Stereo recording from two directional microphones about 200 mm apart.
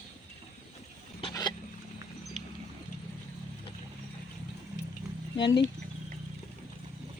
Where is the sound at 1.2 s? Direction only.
20° left (ahead or behind).